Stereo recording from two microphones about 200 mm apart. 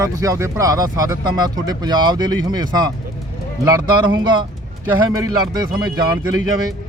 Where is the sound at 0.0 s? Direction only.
15° right (ahead or behind).